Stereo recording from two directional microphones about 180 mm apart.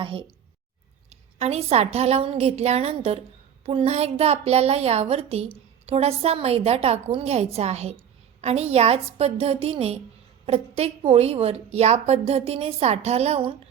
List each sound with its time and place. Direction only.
0.0 s a woman's voice: 30° right (ahead or behind)